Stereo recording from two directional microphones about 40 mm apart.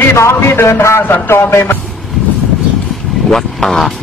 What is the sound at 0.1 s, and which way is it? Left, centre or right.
Music, left.